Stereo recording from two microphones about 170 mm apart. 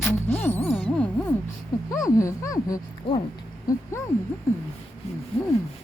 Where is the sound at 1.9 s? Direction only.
20° left (ahead or behind).